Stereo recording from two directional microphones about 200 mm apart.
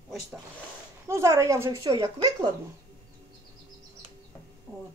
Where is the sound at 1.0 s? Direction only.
15° right (ahead or behind).